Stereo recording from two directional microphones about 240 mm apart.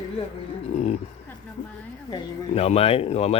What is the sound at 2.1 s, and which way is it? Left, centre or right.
Speech, left.